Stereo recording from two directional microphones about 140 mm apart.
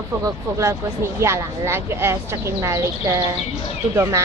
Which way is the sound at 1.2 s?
20° right (ahead or behind).